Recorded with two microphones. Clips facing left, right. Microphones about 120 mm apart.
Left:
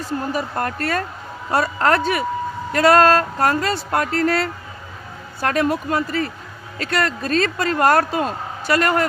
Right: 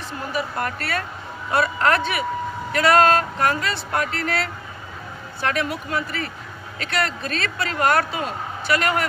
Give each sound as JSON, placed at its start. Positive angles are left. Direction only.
{"t": 0.3, "sound": "speech", "side_deg": 40}